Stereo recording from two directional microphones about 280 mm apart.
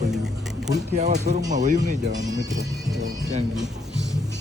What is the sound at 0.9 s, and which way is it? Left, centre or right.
Speech, right.